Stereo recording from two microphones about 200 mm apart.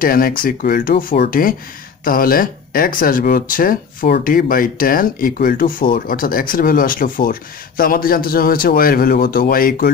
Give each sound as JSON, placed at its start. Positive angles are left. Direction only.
{"t": 0.0, "sound": "speech", "side_deg": 45}